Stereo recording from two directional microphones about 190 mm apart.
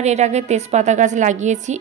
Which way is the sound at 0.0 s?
35° right (ahead or behind).